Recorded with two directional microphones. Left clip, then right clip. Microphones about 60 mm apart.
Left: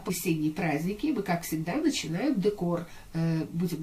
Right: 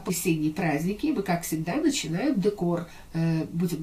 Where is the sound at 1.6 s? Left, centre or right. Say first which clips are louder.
Right 2 dB; left.